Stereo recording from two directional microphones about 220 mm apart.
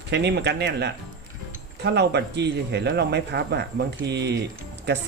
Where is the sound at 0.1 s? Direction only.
50° right (ahead or behind).